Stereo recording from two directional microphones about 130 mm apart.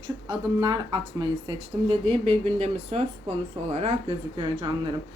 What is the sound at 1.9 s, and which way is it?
Speech, 50° right (ahead or behind).